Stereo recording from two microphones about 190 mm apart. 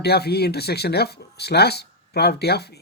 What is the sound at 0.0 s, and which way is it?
Speech, 60° left (ahead or behind).